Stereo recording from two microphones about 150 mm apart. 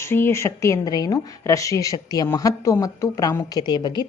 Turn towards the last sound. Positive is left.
turn(degrees=30)  # may be behind; listen again after turning